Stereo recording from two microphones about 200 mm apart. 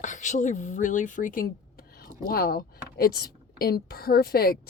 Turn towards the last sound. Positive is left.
turn(degrees=50)  # may be behind; listen again after turning